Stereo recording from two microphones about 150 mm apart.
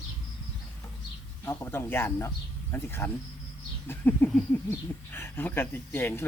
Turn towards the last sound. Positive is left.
turn(degrees=15)  # may be behind; listen again after turning